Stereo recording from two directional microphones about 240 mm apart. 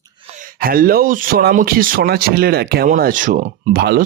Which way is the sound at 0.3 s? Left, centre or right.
Right.